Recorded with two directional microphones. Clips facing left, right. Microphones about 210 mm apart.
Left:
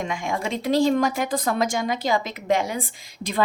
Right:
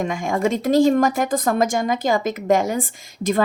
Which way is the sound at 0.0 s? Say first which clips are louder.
Right 6 dB; 50° right (ahead or behind).